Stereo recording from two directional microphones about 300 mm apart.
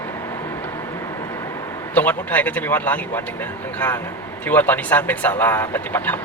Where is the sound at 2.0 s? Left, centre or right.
Centre.